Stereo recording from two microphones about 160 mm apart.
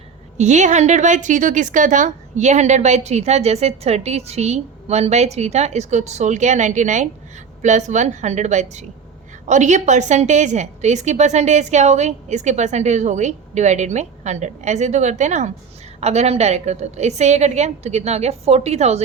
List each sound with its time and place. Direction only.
0.3 s a woman's voice: 45° right (ahead or behind)